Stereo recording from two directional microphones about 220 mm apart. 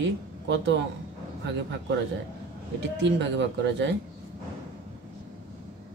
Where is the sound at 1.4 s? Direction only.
55° right (ahead or behind).